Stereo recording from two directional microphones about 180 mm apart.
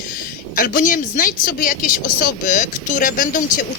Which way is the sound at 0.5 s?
50° left (ahead or behind).